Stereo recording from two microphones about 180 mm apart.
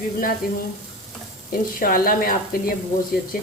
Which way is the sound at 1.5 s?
55° left (ahead or behind).